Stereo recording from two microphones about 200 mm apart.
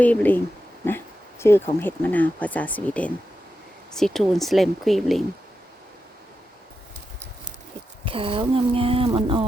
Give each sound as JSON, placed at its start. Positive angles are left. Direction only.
{"t": 0.0, "sound": "speech", "side_deg": 10}
{"t": 0.9, "sound": "a sound", "side_deg": 10}
{"t": 1.8, "sound": "speech", "side_deg": 10}
{"t": 8.0, "sound": "speech", "side_deg": -25}